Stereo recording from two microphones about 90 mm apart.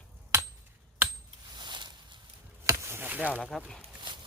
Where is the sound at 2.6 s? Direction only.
30° right (ahead or behind).